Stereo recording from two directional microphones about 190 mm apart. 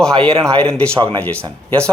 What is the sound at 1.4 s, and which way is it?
Speech, 20° right (ahead or behind).